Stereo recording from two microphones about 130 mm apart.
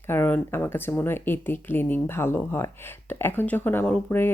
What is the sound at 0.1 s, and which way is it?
Speech, 15° left (ahead or behind).